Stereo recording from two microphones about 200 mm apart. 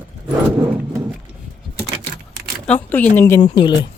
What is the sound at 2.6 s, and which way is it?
Speech, 5° left (ahead or behind).